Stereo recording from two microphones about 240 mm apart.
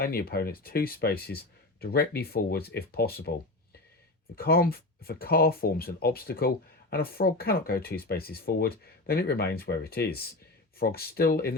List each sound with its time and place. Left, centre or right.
0.0 s speech: left
4.4 s speech: left